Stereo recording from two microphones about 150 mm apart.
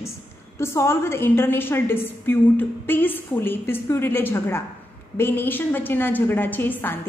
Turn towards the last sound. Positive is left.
turn(degrees=15)  # may be behind; listen again after turning